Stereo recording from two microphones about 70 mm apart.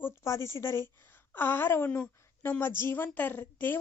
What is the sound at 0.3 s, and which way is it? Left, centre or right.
A woman's voice, left.